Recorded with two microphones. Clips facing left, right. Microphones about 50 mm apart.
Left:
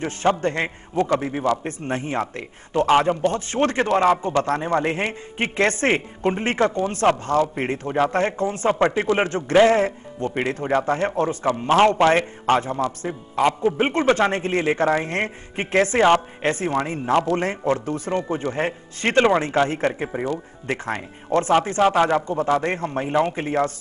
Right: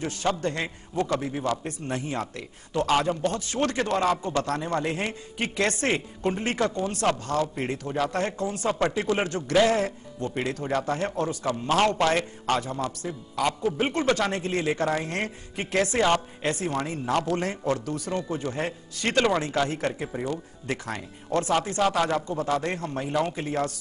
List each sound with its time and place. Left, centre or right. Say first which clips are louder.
0.0 s a man's voice: left 6 dB; left